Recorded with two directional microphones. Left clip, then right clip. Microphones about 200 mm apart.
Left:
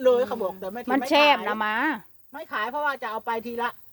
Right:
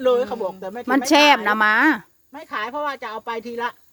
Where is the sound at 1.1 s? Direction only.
30° right (ahead or behind).